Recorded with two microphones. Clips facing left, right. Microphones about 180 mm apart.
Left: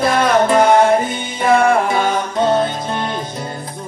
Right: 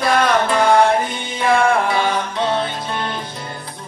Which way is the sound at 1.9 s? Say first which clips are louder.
Left 2 dB; 45° left (ahead or behind).